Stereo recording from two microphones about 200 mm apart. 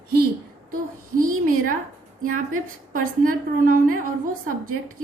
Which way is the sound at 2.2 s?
40° right (ahead or behind).